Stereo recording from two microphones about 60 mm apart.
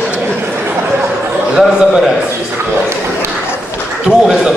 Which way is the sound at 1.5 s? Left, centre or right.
Centre.